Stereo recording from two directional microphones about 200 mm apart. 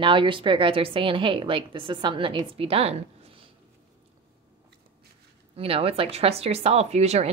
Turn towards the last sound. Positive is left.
turn(degrees=-35)  # may be behind; listen again after turning